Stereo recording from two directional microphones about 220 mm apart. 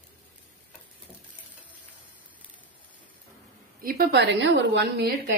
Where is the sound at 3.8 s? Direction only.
40° right (ahead or behind).